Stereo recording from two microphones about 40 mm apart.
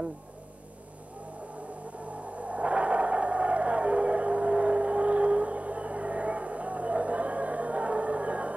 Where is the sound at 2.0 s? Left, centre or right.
Right.